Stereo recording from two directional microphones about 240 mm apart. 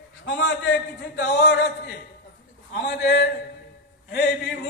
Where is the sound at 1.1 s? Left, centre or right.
Left.